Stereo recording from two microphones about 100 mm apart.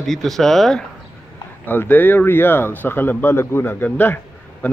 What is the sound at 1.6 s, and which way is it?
Speech, 20° left (ahead or behind).